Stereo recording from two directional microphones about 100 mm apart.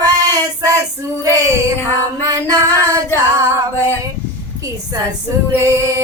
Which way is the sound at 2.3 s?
35° right (ahead or behind).